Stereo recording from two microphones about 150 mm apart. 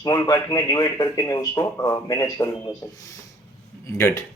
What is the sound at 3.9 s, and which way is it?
Speech, 20° left (ahead or behind).